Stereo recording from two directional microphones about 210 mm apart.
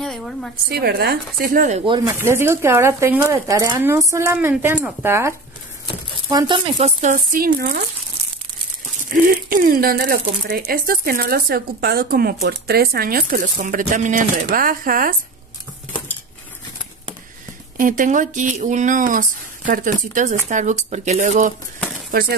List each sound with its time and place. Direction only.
0.0 s a sound: centre (ahead or behind)
0.7 s speech: 50° right (ahead or behind)
1.9 s speech: 15° right (ahead or behind)
6.3 s speech: 20° right (ahead or behind); by 7.8 s 40° right (ahead or behind)
9.1 s speech: 40° right (ahead or behind)
17.7 s speech: 40° right (ahead or behind)